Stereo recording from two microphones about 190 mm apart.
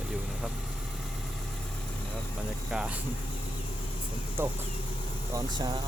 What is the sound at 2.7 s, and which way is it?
Speech, 5° right (ahead or behind).